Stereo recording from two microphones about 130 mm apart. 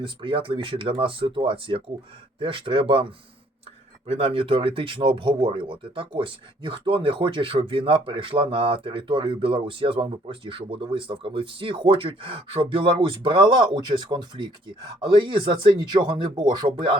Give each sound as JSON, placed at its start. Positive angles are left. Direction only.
{"t": 0.0, "sound": "speech", "side_deg": -40}